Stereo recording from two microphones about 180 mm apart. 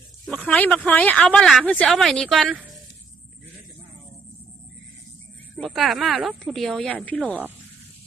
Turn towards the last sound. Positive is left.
turn(degrees=5)  # may be behind; listen again after turning